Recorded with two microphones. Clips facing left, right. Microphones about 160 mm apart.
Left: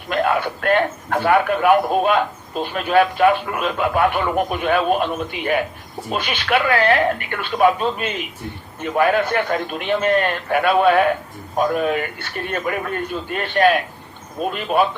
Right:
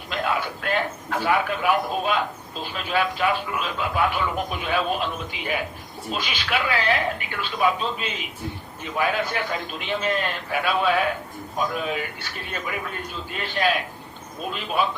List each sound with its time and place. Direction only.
0.1 s a man's voice: 60° left (ahead or behind)